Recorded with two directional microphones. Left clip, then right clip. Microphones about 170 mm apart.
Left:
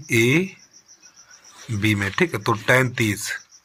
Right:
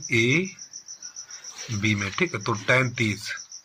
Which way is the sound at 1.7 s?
55° left (ahead or behind).